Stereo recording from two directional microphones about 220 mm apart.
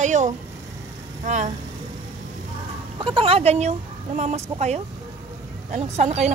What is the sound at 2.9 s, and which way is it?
Speech, 25° right (ahead or behind).